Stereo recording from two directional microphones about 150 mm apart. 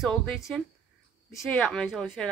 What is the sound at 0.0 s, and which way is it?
A woman's voice, centre (ahead or behind).